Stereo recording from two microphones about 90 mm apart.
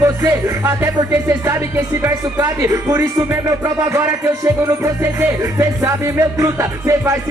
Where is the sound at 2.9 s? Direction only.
40° right (ahead or behind).